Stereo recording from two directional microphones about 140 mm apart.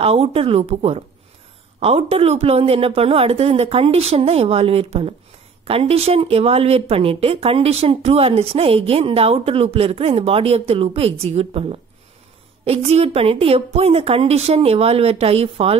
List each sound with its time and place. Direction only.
0.0 s speech: 45° right (ahead or behind)